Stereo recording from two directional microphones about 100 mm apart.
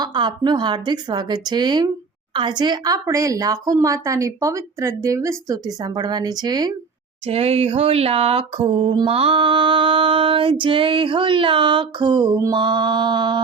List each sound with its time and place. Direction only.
0.0 s a woman's voice: 50° right (ahead or behind)
7.3 s a sound: 90° right; by 9.1 s 55° right (ahead or behind)
9.1 s female singing: 70° right (ahead or behind); by 12.4 s 45° right (ahead or behind)
12.5 s speech: 50° right (ahead or behind)